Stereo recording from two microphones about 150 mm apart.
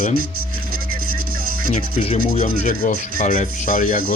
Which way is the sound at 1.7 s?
45° left (ahead or behind).